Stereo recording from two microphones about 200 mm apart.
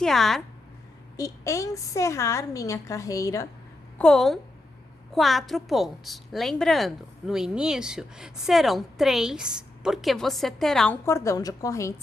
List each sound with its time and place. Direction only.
0.0 s a woman's voice: centre (ahead or behind)
1.1 s a woman's voice: 15° left (ahead or behind)
3.9 s a woman's voice: 5° left (ahead or behind)
11.0 s a woman's voice: 15° left (ahead or behind)